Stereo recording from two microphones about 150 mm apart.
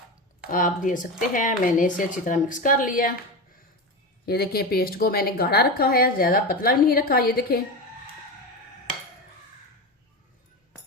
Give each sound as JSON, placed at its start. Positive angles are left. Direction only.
{"t": 0.5, "sound": "speech", "side_deg": 65}
{"t": 4.3, "sound": "speech", "side_deg": 90}